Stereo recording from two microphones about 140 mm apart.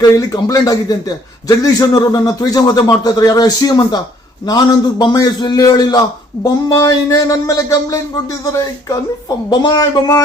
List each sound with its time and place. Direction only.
0.2 s a man's voice: 25° left (ahead or behind)